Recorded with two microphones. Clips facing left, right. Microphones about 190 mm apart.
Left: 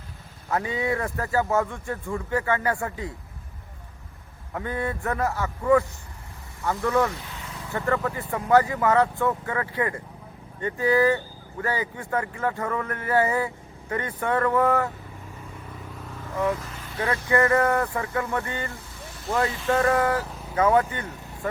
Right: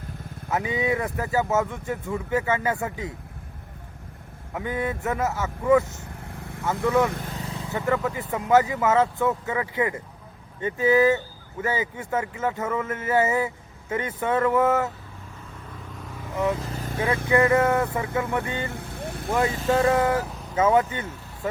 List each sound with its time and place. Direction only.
0.5 s speech: 20° right (ahead or behind)
4.5 s speech: 20° right (ahead or behind)
6.2 s vehicle: 60° right (ahead or behind)
6.8 s speech: 20° right (ahead or behind)
7.1 s speech: 50° right (ahead or behind)
7.4 s vehicle: 20° right (ahead or behind)
8.1 s speech: 20° right (ahead or behind)
16.3 s speech: 20° right (ahead or behind)
16.6 s vehicle: 40° right (ahead or behind)
17.2 s vehicle: 15° right (ahead or behind)
18.7 s vehicle: 60° right (ahead or behind)
19.7 s speech: 20° right (ahead or behind)